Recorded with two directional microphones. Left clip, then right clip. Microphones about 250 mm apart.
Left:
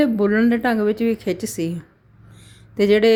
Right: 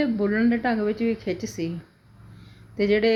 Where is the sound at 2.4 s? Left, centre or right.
Left.